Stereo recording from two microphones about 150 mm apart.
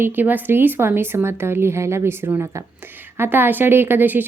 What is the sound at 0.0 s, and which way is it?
Speech, 10° right (ahead or behind).